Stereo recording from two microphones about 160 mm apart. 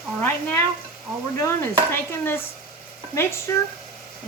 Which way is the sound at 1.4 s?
15° left (ahead or behind).